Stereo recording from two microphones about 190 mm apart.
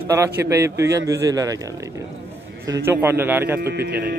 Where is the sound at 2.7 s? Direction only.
10° right (ahead or behind).